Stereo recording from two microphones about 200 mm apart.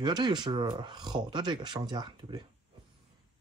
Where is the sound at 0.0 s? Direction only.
20° right (ahead or behind).